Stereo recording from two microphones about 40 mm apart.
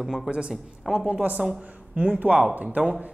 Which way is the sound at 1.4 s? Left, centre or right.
Right.